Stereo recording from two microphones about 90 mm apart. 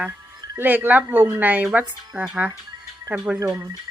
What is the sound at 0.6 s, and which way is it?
A woman's voice, 20° right (ahead or behind).